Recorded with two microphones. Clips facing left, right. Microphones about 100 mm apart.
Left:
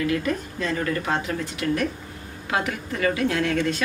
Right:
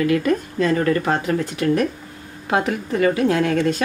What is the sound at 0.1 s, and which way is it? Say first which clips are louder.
A woman's voice: right 6 dB; 55° right (ahead or behind).